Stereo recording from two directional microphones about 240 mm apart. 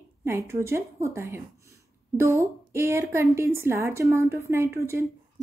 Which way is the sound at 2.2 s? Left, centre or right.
Centre.